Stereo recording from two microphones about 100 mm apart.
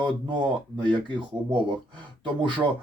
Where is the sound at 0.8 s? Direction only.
50° right (ahead or behind).